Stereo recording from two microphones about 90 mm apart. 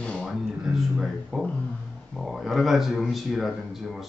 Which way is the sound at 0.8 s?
5° right (ahead or behind).